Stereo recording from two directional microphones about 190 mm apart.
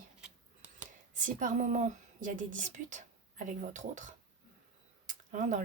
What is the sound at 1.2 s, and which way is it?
Speech, 45° right (ahead or behind).